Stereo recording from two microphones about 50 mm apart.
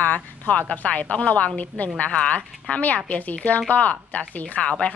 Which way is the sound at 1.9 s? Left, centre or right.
Left.